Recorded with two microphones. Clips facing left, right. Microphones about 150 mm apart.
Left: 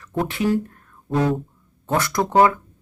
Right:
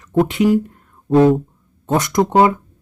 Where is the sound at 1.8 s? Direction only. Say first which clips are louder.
Right 5 dB; 20° right (ahead or behind).